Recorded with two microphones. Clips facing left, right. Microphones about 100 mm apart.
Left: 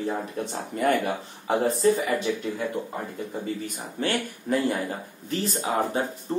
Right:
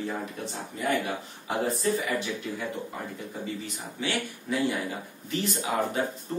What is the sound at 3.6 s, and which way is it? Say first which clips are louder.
Speech: left 4 dB; 50° left (ahead or behind).